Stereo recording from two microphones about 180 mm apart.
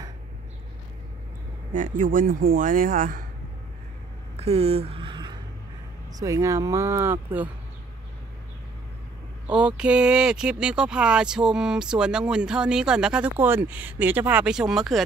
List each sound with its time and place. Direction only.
1.7 s speech: 45° right (ahead or behind)
4.4 s a sound: 35° right (ahead or behind)
6.1 s speech: 20° right (ahead or behind)
9.5 s speech: 5° right (ahead or behind)